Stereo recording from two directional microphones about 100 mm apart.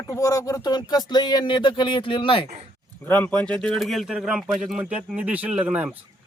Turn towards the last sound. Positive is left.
turn(degrees=-10)  # may be behind; listen again after turning